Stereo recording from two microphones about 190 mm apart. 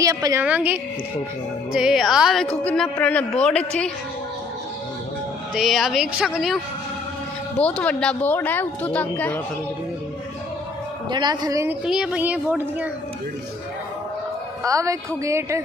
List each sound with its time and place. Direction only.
0.0 s a woman's voice: 15° right (ahead or behind); by 3.9 s 5° left (ahead or behind)
5.5 s a woman's voice: centre (ahead or behind)
11.1 s a man's voice: 25° right (ahead or behind)
11.8 s a woman's voice: 5° right (ahead or behind)
14.6 s a woman's voice: 15° right (ahead or behind)